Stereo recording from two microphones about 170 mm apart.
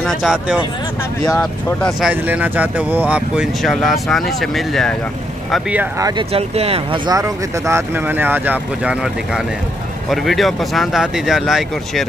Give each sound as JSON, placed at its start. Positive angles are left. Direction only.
{"t": 0.0, "sound": "speech", "side_deg": 0}
{"t": 5.9, "sound": "speech", "side_deg": -20}
{"t": 6.3, "sound": "speech", "side_deg": -35}
{"t": 7.1, "sound": "speech", "side_deg": -20}